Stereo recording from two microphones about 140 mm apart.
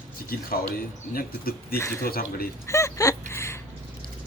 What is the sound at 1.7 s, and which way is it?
Speech, 20° left (ahead or behind).